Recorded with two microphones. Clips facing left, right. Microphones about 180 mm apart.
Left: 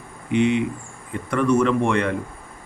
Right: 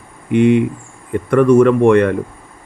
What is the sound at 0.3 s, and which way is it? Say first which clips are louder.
A man's voice: right 7 dB; 55° right (ahead or behind).